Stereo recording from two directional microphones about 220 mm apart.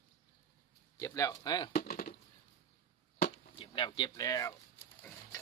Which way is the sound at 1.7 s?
40° left (ahead or behind).